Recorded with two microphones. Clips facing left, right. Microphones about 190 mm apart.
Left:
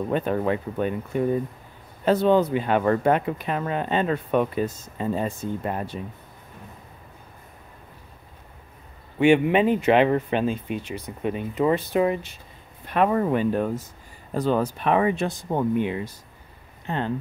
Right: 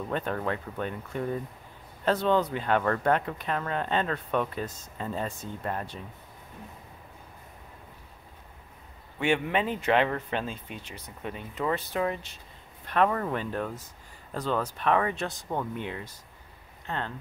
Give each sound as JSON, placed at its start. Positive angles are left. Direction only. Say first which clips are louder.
{"t": 0.1, "sound": "speech", "louder": "left 6 dB", "side_deg": 10}
{"t": 9.2, "sound": "speech", "louder": "left 9 dB", "side_deg": 15}